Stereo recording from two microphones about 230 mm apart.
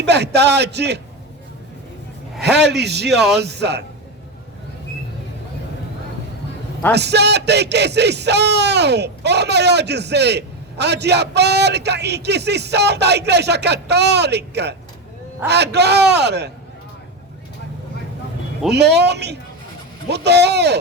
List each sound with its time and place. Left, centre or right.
0.0 s speech: right
2.4 s speech: right
3.1 s speech: centre
3.3 s speech: right
6.9 s speech: right
18.7 s speech: right